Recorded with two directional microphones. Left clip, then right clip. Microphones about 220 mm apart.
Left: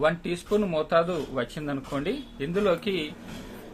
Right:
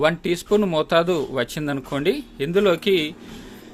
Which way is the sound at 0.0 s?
45° right (ahead or behind).